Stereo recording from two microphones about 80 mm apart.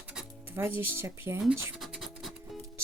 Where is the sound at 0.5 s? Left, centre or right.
Right.